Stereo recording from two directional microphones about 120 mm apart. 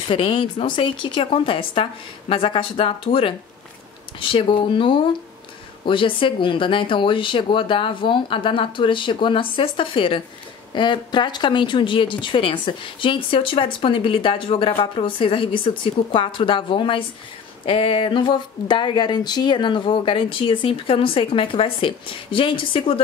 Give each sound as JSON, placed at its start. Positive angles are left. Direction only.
{"t": 0.1, "sound": "speech", "side_deg": 45}